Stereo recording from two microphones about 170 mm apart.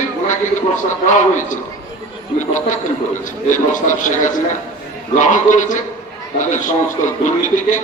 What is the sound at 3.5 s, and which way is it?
A man's voice, 50° left (ahead or behind).